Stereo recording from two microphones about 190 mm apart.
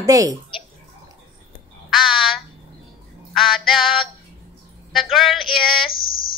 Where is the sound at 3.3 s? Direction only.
Centre (ahead or behind).